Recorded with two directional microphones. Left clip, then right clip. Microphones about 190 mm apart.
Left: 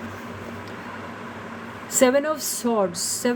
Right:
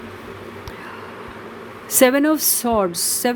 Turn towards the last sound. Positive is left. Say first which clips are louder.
# right 3 dB
turn(degrees=-55)  # may be behind; listen again after turning